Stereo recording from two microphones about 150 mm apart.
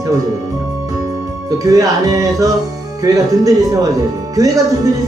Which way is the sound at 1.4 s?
25° right (ahead or behind).